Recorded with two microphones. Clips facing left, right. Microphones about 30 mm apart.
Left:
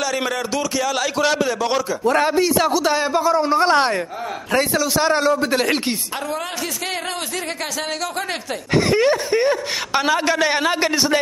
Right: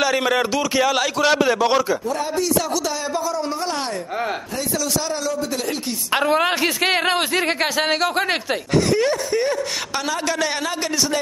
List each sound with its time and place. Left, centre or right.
0.7 s speech: centre
1.0 s a man's voice: centre
2.0 s a man's voice: left
2.3 s a man's voice: left
3.6 s a man's voice: left
5.0 s a man's voice: left
6.1 s a man's voice: right
8.9 s a man's voice: left